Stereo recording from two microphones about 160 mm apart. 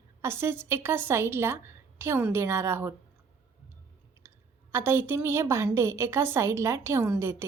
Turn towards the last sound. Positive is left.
turn(degrees=-15)  # may be behind; listen again after turning